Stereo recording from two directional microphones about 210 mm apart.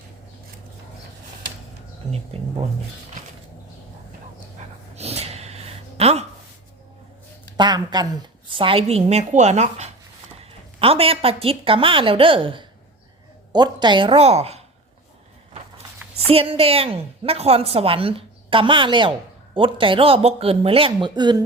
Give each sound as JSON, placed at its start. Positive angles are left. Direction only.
{"t": 2.3, "sound": "a woman's voice", "side_deg": -30}
{"t": 4.9, "sound": "gasp", "side_deg": -30}
{"t": 7.5, "sound": "a woman's voice", "side_deg": -20}
{"t": 16.3, "sound": "a woman's voice", "side_deg": -25}